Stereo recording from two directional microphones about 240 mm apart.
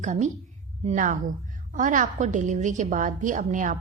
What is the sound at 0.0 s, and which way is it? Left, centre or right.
A woman's voice, right.